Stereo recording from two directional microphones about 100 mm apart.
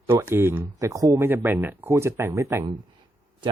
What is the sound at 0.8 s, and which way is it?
Speech, 35° right (ahead or behind).